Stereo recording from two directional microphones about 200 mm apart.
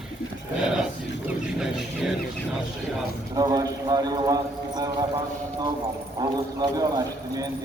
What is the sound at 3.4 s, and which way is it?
A man's voice, 20° right (ahead or behind).